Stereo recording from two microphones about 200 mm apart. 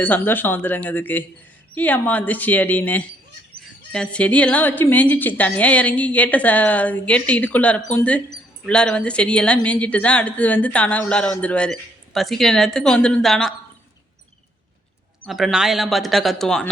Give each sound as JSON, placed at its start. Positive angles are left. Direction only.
{"t": 0.0, "sound": "a woman's voice", "side_deg": 10}
{"t": 15.2, "sound": "a woman's voice", "side_deg": 0}